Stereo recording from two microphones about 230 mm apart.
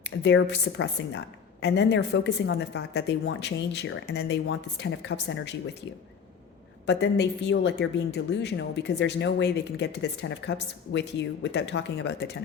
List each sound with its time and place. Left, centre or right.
0.0 s a woman's voice: left